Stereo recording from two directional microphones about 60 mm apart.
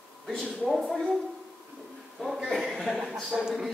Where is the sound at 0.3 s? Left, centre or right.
Centre.